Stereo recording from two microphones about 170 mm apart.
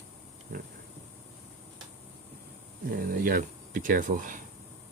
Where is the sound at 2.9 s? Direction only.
55° right (ahead or behind).